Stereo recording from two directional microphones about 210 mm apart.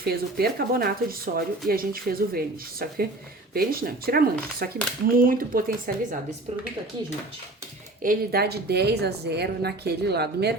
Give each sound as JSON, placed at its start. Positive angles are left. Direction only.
{"t": 0.0, "sound": "a woman's voice", "side_deg": -50}
{"t": 8.0, "sound": "a woman's voice", "side_deg": -45}